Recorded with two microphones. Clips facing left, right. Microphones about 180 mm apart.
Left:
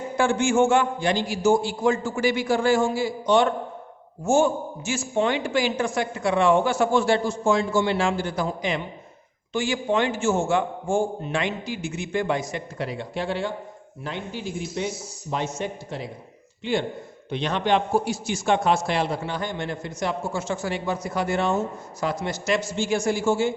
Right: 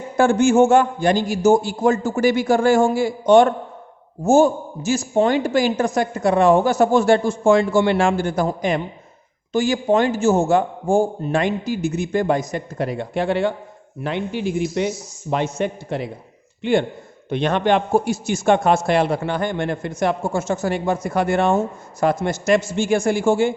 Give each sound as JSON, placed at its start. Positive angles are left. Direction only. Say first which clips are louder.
{"t": 0.2, "sound": "a man's voice", "louder": "right 6 dB", "side_deg": -40}
{"t": 4.2, "sound": "a man's voice", "louder": "right 6 dB", "side_deg": -40}